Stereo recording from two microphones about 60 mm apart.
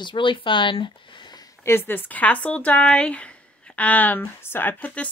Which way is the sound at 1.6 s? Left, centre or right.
Left.